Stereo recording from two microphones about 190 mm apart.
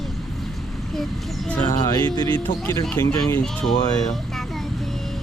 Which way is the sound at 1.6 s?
20° left (ahead or behind).